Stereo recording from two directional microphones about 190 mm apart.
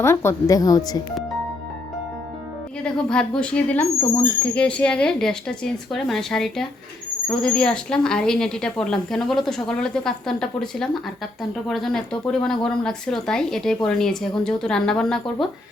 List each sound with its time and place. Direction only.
0.0 s a woman's voice: 15° left (ahead or behind)
2.8 s speech: 5° left (ahead or behind)